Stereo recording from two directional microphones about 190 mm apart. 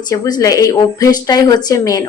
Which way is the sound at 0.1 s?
20° left (ahead or behind).